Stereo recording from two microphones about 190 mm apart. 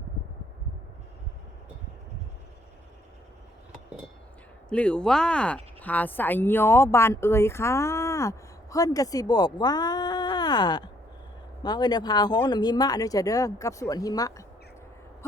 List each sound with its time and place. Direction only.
4.7 s speech: 5° left (ahead or behind)